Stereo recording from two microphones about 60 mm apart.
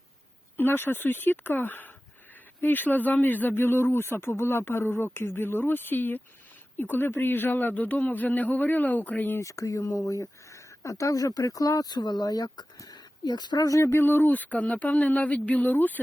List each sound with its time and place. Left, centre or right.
0.5 s speech: left
9.4 s speech: left
13.6 s speech: left
13.8 s speech: left